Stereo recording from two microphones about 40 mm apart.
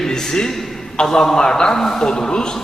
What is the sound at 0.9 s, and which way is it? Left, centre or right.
A man's voice, centre.